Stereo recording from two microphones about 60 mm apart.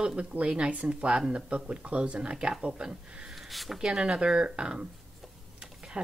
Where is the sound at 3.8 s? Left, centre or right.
Centre.